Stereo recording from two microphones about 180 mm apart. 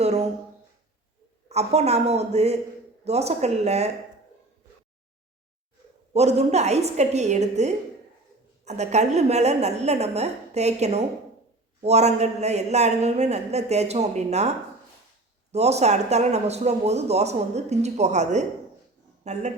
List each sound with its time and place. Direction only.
0.0 s a sound: 40° right (ahead or behind)
1.5 s speech: 35° right (ahead or behind)
6.1 s speech: 35° right (ahead or behind)
15.5 s speech: 35° right (ahead or behind)